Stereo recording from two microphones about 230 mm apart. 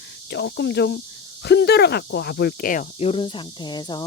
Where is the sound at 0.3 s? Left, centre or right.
Left.